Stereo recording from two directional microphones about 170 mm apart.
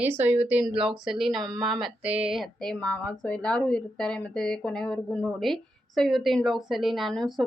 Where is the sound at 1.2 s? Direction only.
Centre (ahead or behind).